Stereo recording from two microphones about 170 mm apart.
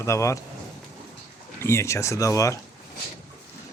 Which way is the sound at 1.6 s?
15° left (ahead or behind).